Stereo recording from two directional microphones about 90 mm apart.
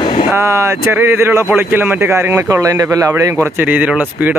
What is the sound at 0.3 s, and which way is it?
Speech, 30° right (ahead or behind).